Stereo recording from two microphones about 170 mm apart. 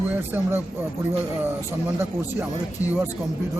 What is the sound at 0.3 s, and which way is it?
Speech, 10° right (ahead or behind).